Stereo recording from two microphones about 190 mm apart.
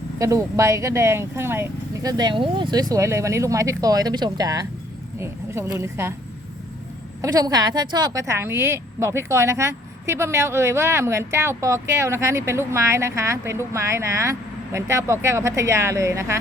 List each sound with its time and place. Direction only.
0.2 s a woman's voice: 15° right (ahead or behind)
7.2 s a woman's voice: 20° right (ahead or behind)